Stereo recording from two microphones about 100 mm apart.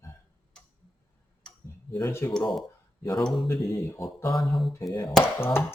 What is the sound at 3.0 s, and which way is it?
Speech, 35° left (ahead or behind).